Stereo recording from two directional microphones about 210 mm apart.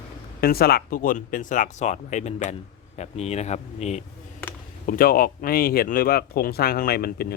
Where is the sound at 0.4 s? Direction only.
45° left (ahead or behind).